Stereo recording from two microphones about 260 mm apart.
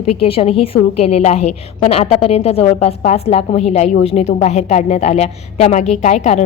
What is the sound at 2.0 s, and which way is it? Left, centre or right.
A woman's voice, left.